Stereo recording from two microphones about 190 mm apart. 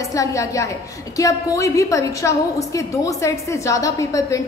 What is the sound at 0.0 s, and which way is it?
A woman's voice, 15° left (ahead or behind).